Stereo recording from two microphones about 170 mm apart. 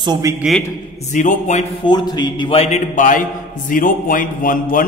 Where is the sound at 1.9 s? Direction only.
25° left (ahead or behind).